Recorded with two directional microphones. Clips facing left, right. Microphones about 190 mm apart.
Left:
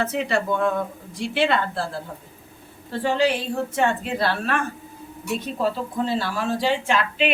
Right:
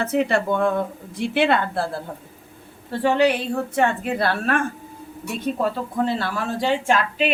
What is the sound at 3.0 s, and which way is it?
A woman's voice, 60° right (ahead or behind).